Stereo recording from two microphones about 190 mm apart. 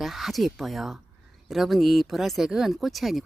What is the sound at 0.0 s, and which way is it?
Speech, centre (ahead or behind).